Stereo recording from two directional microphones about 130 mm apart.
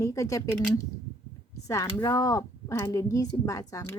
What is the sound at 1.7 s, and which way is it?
A woman's voice, 25° left (ahead or behind).